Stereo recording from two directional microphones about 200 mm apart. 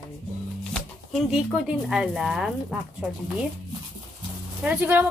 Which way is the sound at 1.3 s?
5° right (ahead or behind).